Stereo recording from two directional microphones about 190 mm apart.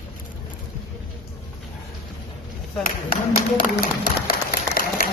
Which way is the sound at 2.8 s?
45° left (ahead or behind).